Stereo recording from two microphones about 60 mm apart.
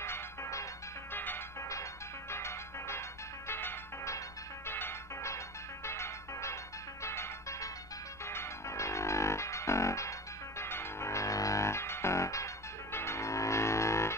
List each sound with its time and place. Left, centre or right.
0.0 s music: left
1.1 s music: left
1.6 s music: left
2.3 s music: left
5.9 s music: left
10.6 s music: left
12.9 s a sound: left